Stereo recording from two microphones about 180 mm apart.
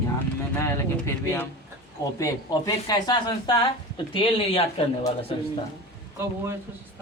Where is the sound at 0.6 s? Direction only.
15° left (ahead or behind); by 4.6 s 30° left (ahead or behind).